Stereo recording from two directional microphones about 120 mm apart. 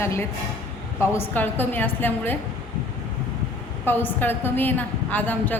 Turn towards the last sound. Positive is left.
turn(degrees=15)  # may be behind; listen again after turning